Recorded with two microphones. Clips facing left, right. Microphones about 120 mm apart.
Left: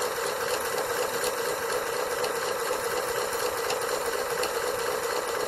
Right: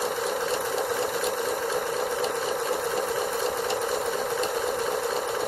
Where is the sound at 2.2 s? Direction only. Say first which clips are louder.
Right 2 dB; centre (ahead or behind).